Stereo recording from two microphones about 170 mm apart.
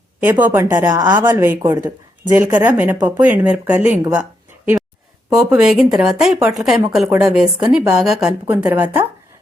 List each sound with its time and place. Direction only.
0.3 s a woman's voice: 10° right (ahead or behind)
4.1 s a sound: 10° right (ahead or behind)
5.3 s a woman's voice: 5° right (ahead or behind)